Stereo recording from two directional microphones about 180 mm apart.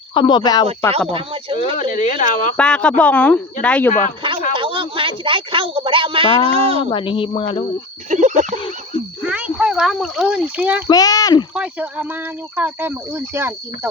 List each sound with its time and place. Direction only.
0.1 s speech: 25° left (ahead or behind)
0.9 s speech: 30° right (ahead or behind)
1.7 s speech: 45° left (ahead or behind)
2.6 s speech: 5° left (ahead or behind)
4.5 s speech: 30° right (ahead or behind)
6.9 s speech: 30° left (ahead or behind)
8.1 s speech: 40° right (ahead or behind)
9.2 s speech: 5° right (ahead or behind)
10.8 s speech: 20° left (ahead or behind)
11.5 s speech: 5° right (ahead or behind)